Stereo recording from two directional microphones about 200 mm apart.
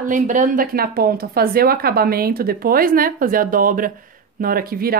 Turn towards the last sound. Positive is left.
turn(degrees=-50)  # may be behind; listen again after turning